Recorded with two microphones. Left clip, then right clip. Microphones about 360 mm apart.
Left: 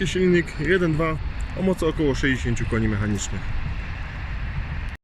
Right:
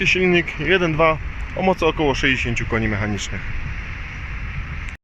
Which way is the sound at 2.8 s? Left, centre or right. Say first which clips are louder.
Right 4 dB; right.